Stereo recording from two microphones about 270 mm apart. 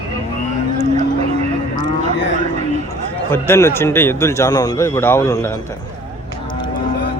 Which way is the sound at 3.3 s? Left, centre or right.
Centre.